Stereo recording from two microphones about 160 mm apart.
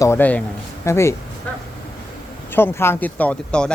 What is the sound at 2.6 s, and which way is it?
Speech, 15° left (ahead or behind).